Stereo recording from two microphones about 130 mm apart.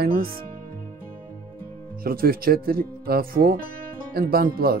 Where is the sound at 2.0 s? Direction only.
90° right.